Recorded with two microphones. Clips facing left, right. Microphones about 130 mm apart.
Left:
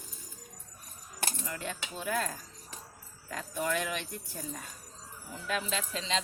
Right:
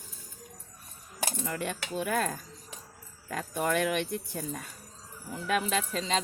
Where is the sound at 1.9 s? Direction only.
65° right (ahead or behind).